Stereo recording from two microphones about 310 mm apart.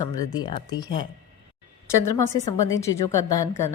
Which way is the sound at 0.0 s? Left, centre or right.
Centre.